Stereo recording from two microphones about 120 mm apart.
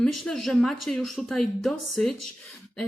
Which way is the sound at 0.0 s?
5° left (ahead or behind).